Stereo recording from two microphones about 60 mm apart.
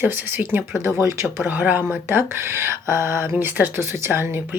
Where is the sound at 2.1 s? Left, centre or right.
Right.